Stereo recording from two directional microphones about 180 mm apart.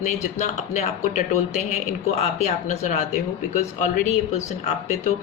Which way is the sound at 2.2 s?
40° left (ahead or behind).